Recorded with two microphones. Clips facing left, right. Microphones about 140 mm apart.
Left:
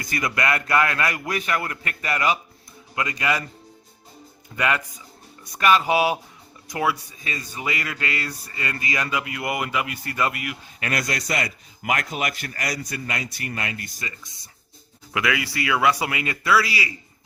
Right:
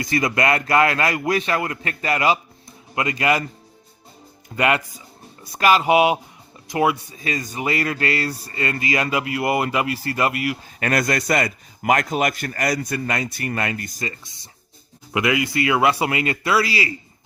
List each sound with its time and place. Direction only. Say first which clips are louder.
0.0 s a man's voice: right 5 dB; 25° right (ahead or behind)
4.5 s a man's voice: right 4 dB; 25° right (ahead or behind)
7.6 s a man's voice: right 6 dB; 35° right (ahead or behind)
10.8 s a man's voice: right 5 dB; 45° right (ahead or behind)
15.1 s a man's voice: right 5 dB; 25° right (ahead or behind)